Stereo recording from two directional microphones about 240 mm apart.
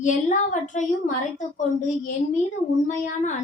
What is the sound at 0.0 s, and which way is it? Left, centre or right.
A woman's voice, left.